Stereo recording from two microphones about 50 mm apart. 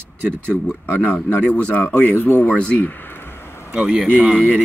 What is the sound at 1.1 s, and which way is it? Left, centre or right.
Speech, left.